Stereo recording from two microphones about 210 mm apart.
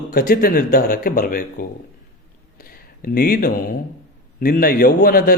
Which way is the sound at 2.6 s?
45° left (ahead or behind).